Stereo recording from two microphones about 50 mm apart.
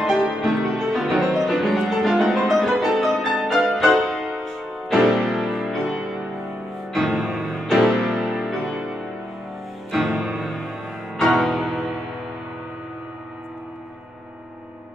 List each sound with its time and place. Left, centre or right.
0.2 s music: centre